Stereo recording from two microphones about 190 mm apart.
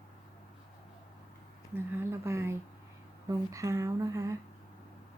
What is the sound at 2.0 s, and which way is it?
Speech, 15° right (ahead or behind).